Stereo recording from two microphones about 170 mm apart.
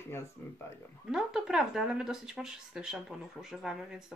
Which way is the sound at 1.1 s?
5° right (ahead or behind).